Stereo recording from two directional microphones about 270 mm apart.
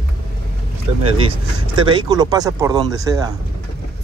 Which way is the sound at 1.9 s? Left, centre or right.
Centre.